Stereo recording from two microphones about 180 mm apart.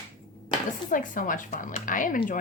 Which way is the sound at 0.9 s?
45° left (ahead or behind).